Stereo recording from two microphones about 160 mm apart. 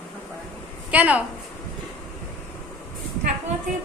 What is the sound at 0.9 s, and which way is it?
Speech, 10° right (ahead or behind).